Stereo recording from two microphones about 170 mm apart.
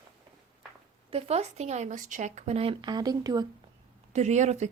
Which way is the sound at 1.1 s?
35° right (ahead or behind).